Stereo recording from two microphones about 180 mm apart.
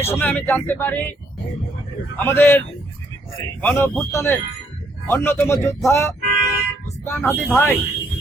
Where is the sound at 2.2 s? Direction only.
10° left (ahead or behind).